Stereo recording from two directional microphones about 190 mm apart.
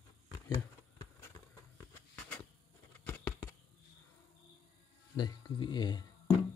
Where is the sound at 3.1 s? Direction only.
10° left (ahead or behind).